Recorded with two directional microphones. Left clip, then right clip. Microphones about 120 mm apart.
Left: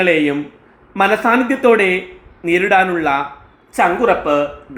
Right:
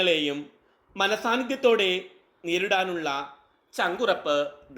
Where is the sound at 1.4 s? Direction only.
50° right (ahead or behind).